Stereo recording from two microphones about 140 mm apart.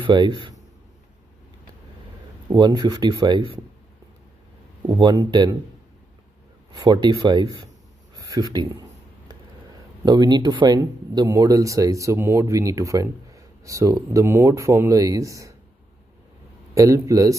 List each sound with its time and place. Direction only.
0.0 s speech: 35° right (ahead or behind)
2.5 s speech: 30° right (ahead or behind)
4.8 s speech: 30° right (ahead or behind)
6.7 s speech: 30° right (ahead or behind)
10.0 s speech: 30° right (ahead or behind)
16.7 s speech: 25° right (ahead or behind)